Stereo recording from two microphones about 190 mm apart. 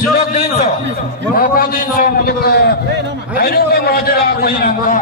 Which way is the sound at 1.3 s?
50° left (ahead or behind).